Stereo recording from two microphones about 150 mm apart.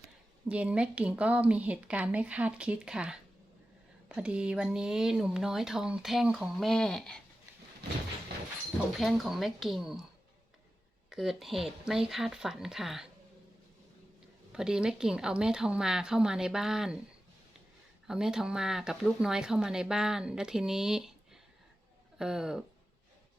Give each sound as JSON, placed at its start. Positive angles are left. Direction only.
{"t": 0.4, "sound": "a woman's voice", "side_deg": -10}
{"t": 9.0, "sound": "speech", "side_deg": 0}
{"t": 11.1, "sound": "speech", "side_deg": 0}
{"t": 14.5, "sound": "speech", "side_deg": -5}
{"t": 18.1, "sound": "speech", "side_deg": -5}
{"t": 22.2, "sound": "speech", "side_deg": -5}